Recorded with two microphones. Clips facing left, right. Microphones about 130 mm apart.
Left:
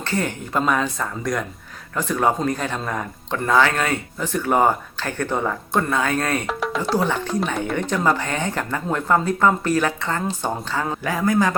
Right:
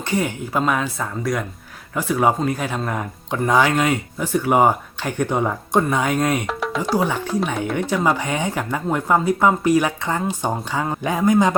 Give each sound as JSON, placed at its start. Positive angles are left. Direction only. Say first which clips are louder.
{"t": 0.0, "sound": "speech", "louder": "right 2 dB", "side_deg": -10}
{"t": 6.5, "sound": "speech", "louder": "even", "side_deg": 0}
{"t": 6.9, "sound": "a man's voice", "louder": "right 1 dB", "side_deg": -10}